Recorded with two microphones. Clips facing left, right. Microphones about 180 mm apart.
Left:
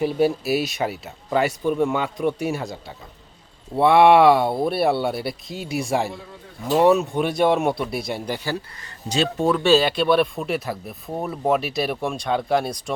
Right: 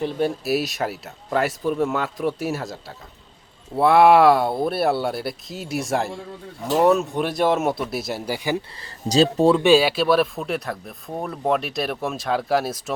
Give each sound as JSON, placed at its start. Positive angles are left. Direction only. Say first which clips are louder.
{"t": 0.0, "sound": "speech", "louder": "left 3 dB", "side_deg": 5}
{"t": 8.5, "sound": "speech", "louder": "right 3 dB", "side_deg": -35}
{"t": 9.6, "sound": "speech", "louder": "right 1 dB", "side_deg": -10}